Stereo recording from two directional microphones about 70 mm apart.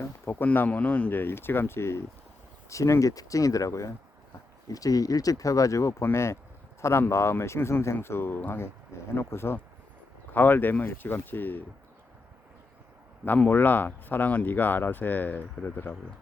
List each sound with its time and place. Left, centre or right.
0.0 s speech: left
1.1 s speech: left
13.4 s speech: left